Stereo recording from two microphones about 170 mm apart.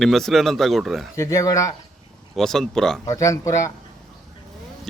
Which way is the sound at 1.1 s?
15° left (ahead or behind).